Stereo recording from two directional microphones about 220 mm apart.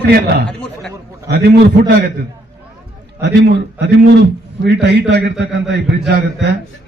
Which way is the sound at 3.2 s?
50° right (ahead or behind).